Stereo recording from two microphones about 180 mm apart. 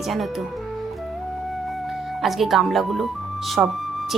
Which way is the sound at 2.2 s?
Centre (ahead or behind).